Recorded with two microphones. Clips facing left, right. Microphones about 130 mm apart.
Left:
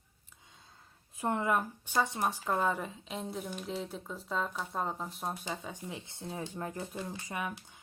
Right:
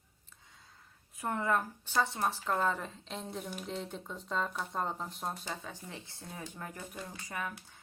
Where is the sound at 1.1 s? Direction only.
25° left (ahead or behind).